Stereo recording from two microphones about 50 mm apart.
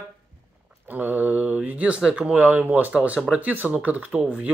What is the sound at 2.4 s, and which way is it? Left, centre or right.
Speech, right.